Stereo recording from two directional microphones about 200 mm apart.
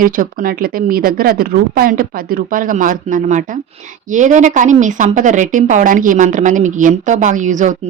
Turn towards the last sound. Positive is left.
turn(degrees=-35)  # may be behind; listen again after turning